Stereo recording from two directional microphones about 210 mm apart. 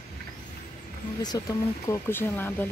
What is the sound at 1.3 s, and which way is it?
Speech, 15° left (ahead or behind).